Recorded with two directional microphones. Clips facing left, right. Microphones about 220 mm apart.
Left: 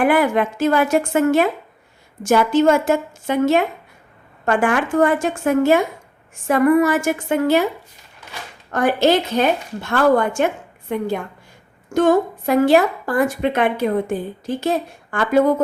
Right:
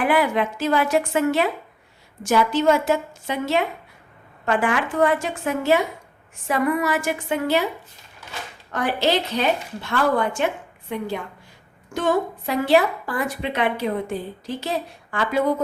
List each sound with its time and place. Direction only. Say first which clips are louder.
0.0 s a woman's voice: left 4 dB; 50° left (ahead or behind)
8.7 s a woman's voice: left 6 dB; 45° left (ahead or behind)